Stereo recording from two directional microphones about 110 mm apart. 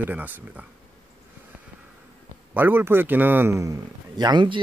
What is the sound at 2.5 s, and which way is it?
A man's voice, 15° right (ahead or behind).